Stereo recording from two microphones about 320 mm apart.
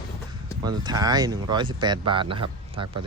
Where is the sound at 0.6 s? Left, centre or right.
Centre.